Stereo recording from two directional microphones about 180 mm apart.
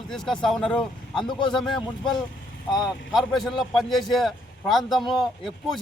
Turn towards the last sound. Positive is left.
turn(degrees=0)  # may be behind; listen again after turning